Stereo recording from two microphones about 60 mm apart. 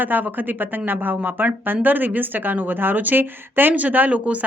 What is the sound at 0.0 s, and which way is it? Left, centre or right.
Speech, right.